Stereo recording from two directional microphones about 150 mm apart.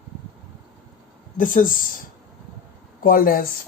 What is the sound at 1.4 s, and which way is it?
Speech, 65° left (ahead or behind).